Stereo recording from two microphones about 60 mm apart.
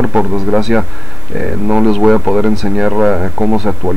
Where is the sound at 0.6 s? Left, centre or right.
Centre.